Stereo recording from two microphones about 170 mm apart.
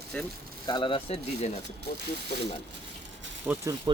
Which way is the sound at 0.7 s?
25° left (ahead or behind).